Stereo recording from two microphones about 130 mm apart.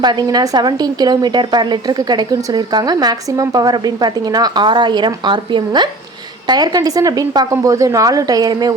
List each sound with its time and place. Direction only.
0.0 s a woman's voice: 30° right (ahead or behind)